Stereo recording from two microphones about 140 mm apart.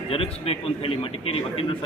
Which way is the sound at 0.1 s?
40° left (ahead or behind).